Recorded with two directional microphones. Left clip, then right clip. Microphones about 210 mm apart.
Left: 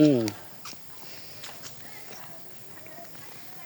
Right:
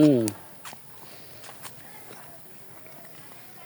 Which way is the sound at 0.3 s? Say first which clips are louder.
Right 1 dB; 30° right (ahead or behind).